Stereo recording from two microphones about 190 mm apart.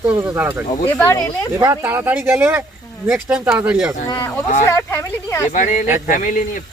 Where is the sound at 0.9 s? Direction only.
10° left (ahead or behind).